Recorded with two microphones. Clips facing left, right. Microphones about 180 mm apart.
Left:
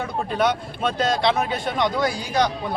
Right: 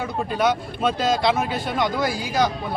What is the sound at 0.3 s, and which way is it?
Speech, centre (ahead or behind).